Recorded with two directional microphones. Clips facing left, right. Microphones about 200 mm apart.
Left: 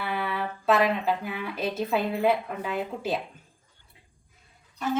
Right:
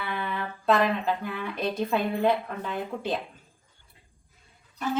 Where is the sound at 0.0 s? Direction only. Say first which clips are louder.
Left 2 dB; 5° left (ahead or behind).